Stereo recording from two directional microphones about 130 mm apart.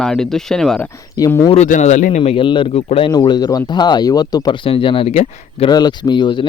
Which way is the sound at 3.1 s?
30° left (ahead or behind).